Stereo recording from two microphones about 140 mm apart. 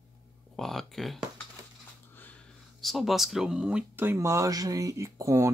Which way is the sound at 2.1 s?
10° left (ahead or behind).